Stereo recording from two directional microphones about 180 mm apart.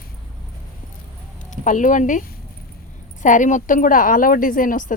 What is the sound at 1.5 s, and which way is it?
A woman's voice, 45° left (ahead or behind).